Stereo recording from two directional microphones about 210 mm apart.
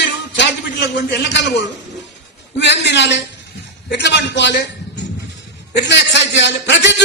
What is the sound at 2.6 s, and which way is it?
A man's voice, 55° left (ahead or behind).